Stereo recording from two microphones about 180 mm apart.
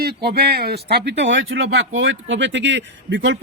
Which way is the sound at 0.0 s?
60° right (ahead or behind).